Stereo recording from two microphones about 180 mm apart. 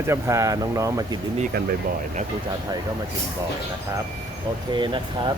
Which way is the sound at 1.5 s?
55° right (ahead or behind).